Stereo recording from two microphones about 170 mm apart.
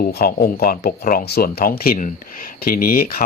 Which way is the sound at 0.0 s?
60° left (ahead or behind).